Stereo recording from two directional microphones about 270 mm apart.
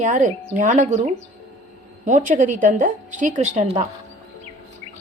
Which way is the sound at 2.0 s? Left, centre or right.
Right.